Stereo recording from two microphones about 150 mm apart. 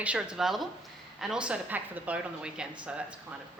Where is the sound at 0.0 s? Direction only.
5° right (ahead or behind).